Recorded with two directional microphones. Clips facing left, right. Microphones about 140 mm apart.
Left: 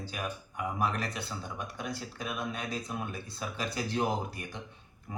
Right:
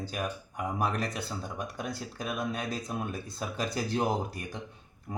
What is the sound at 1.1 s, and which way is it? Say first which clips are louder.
Speech: right 2 dB; 40° right (ahead or behind).